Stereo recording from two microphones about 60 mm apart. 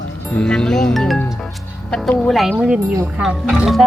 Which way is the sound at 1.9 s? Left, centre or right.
Centre.